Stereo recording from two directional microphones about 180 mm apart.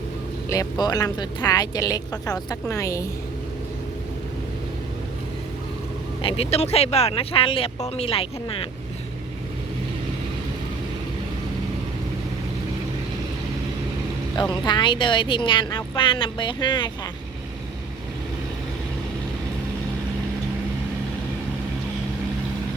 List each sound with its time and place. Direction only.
0.5 s speech: 20° left (ahead or behind)
6.2 s speech: 35° left (ahead or behind)
14.6 s speech: 25° left (ahead or behind)